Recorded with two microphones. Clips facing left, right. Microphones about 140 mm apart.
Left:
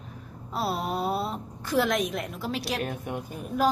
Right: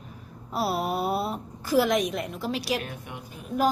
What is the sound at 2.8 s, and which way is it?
Speech, 50° left (ahead or behind).